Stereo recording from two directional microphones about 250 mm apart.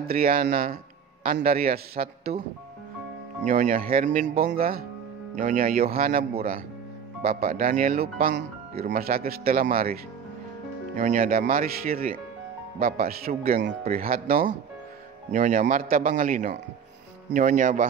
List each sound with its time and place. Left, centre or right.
0.0 s speech: right
3.4 s speech: right
11.0 s speech: right